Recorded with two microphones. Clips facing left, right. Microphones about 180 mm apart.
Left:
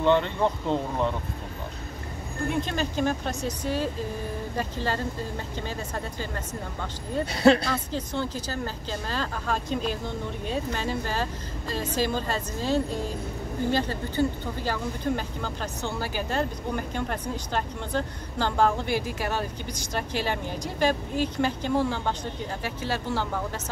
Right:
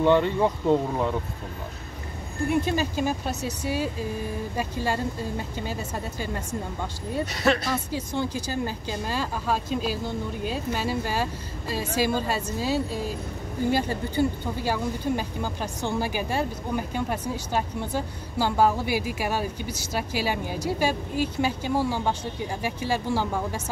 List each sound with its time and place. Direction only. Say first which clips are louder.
0.0 s speech: right 2 dB; 10° right (ahead or behind)
2.6 s speech: right 1 dB; 10° right (ahead or behind)
7.2 s speech: left 6 dB; 30° left (ahead or behind)
7.9 s speech: right 2 dB; 10° right (ahead or behind)